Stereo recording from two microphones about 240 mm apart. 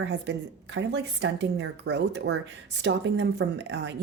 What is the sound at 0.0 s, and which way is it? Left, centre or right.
A woman's voice, right.